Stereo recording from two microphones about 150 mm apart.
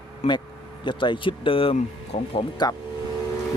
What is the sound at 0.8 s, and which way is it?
Speech, 30° left (ahead or behind).